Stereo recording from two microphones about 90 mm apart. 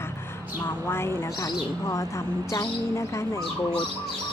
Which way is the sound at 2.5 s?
35° left (ahead or behind).